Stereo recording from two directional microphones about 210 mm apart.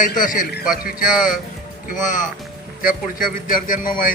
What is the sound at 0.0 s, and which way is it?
Speech, 40° left (ahead or behind).